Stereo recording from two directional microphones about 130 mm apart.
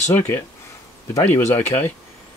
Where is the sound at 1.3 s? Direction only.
15° left (ahead or behind).